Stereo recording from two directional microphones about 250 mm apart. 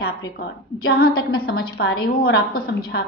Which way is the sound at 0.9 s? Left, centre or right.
Left.